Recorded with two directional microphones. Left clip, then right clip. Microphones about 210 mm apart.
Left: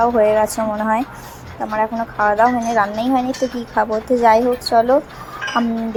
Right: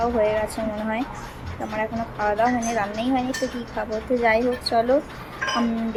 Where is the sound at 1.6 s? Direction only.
10° left (ahead or behind).